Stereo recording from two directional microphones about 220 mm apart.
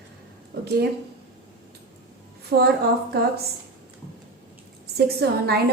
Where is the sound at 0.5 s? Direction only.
45° right (ahead or behind).